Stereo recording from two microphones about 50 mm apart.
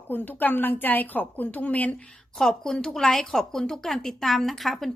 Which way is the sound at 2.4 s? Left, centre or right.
Centre.